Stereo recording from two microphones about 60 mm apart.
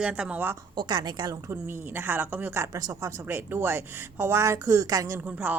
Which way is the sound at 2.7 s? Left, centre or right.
Right.